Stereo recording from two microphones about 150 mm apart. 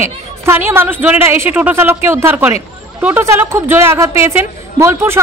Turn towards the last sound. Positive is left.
turn(degrees=-15)  # may be behind; listen again after turning